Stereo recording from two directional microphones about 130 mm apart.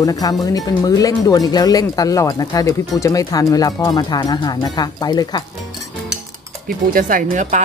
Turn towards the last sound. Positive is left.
turn(degrees=-80)